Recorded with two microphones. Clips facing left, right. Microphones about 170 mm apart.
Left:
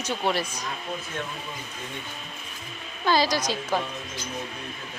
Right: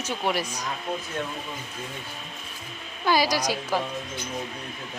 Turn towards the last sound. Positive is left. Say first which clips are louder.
# right 1 dB
turn(degrees=-5)  # may be behind; listen again after turning